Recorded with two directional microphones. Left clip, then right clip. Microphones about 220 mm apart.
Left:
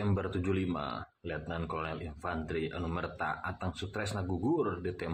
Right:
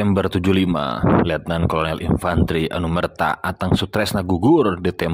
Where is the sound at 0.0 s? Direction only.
45° right (ahead or behind).